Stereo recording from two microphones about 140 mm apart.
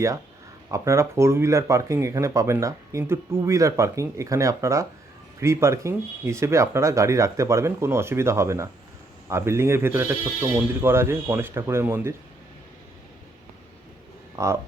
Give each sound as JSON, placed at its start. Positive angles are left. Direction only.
{"t": 0.7, "sound": "speech", "side_deg": -20}
{"t": 14.3, "sound": "speech", "side_deg": -20}